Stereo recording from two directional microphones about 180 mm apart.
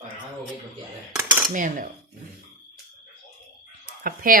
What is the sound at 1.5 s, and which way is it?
Speech, 45° right (ahead or behind).